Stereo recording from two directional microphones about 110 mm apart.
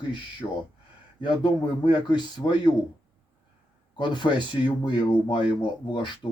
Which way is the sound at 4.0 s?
45° left (ahead or behind).